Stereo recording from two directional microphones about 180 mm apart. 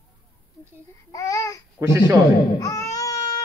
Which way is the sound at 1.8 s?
15° right (ahead or behind).